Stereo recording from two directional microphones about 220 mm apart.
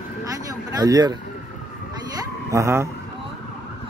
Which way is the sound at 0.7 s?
15° right (ahead or behind).